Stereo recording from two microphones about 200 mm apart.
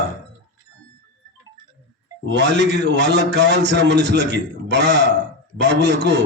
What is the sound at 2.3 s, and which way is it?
A man's voice, 60° right (ahead or behind).